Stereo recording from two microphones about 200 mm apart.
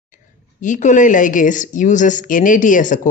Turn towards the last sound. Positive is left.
turn(degrees=40)  # may be behind; listen again after turning